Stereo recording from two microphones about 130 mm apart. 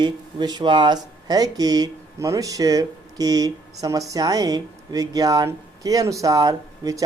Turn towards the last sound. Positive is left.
turn(degrees=-25)  # may be behind; listen again after turning